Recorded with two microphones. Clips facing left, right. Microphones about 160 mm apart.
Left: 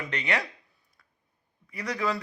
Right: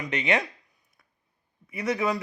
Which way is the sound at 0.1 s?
20° right (ahead or behind).